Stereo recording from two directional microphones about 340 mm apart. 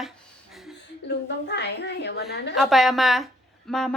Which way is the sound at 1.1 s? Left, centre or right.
Left.